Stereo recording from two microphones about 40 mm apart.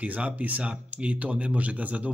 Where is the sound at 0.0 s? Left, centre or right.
Right.